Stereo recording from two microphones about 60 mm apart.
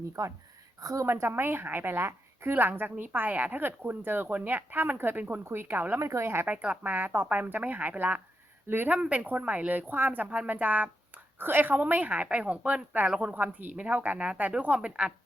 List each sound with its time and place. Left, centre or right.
0.2 s a woman's voice: right
1.0 s a woman's voice: right
6.0 s a woman's voice: right
6.4 s a woman's voice: right
8.9 s a woman's voice: right